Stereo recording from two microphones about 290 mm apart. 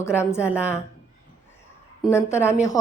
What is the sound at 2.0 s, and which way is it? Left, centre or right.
Speech, centre.